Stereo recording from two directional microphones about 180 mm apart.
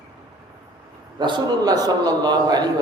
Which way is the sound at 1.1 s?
25° right (ahead or behind).